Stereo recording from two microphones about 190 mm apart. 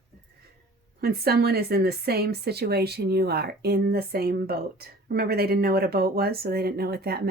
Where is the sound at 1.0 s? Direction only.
55° right (ahead or behind).